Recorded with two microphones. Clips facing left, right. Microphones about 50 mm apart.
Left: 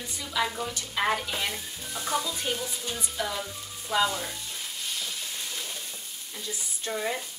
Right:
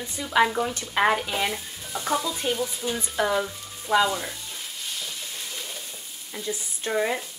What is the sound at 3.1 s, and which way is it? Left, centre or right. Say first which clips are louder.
Speech: right 9 dB; right.